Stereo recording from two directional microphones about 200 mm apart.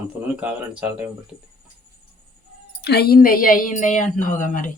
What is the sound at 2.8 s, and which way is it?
A woman's voice, 55° left (ahead or behind).